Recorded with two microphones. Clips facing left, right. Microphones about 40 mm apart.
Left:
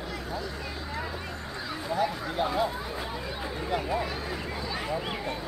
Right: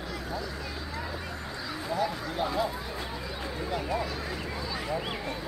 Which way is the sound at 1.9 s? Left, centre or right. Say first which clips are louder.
Left 2 dB; left.